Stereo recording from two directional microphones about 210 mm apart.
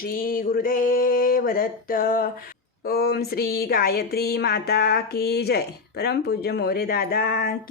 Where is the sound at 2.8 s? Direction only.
50° left (ahead or behind).